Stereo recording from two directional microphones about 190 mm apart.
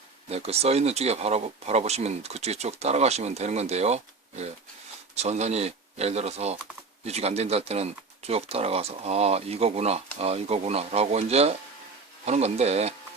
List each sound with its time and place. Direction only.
0.3 s speech: 35° right (ahead or behind)